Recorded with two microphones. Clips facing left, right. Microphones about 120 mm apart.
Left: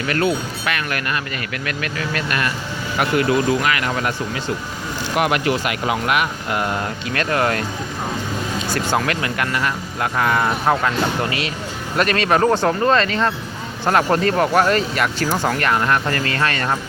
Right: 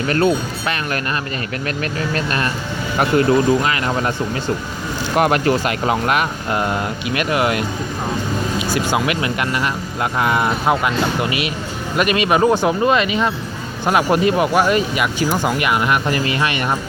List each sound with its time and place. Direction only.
0.1 s speech: 30° right (ahead or behind)
5.1 s speech: 35° right (ahead or behind)
6.6 s speech: 20° right (ahead or behind)